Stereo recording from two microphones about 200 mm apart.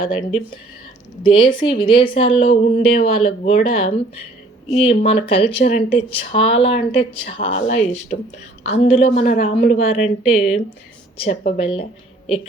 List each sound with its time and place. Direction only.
0.0 s a woman's voice: 25° left (ahead or behind)